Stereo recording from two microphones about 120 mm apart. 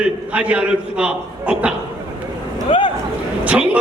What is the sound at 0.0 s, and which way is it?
A man's voice, 10° right (ahead or behind).